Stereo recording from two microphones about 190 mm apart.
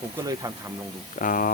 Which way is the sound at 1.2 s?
45° left (ahead or behind).